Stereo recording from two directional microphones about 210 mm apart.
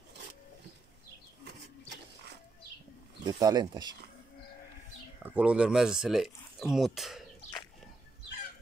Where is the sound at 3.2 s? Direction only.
20° right (ahead or behind).